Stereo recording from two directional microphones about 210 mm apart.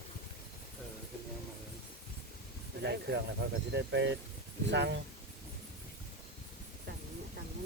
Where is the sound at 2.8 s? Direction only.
55° right (ahead or behind).